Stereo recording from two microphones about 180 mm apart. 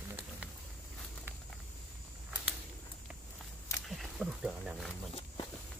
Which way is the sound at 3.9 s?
Centre (ahead or behind).